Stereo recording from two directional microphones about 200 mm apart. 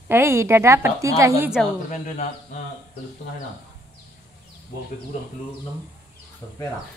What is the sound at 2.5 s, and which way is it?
Speech, 40° left (ahead or behind).